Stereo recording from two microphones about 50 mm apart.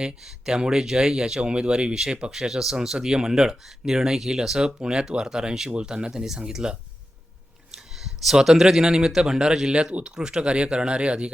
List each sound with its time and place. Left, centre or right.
0.0 s speech: centre
7.8 s speech: centre; by 11.3 s right